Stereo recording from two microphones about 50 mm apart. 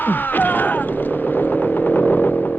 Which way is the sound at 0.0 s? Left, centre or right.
Left.